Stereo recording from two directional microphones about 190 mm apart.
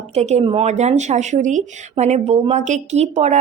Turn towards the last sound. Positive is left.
turn(degrees=-35)  # may be behind; listen again after turning